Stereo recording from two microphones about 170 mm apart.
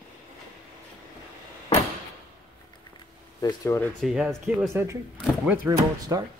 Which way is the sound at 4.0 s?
Centre (ahead or behind).